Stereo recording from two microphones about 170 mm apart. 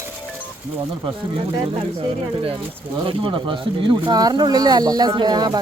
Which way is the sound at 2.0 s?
35° right (ahead or behind).